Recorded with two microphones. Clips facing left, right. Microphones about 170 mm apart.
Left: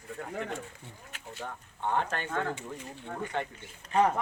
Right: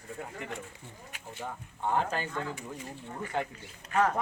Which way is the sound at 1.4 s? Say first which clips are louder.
Right 1 dB; 5° right (ahead or behind).